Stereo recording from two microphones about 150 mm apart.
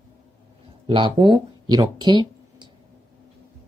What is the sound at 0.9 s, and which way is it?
Speech, 35° right (ahead or behind).